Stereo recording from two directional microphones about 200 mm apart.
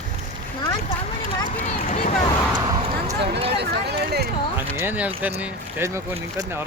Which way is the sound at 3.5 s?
55° right (ahead or behind).